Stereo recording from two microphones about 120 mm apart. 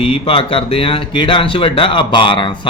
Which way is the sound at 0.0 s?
50° left (ahead or behind).